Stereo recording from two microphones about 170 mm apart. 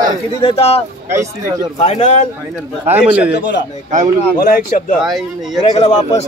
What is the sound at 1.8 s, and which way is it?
Speech, 40° left (ahead or behind).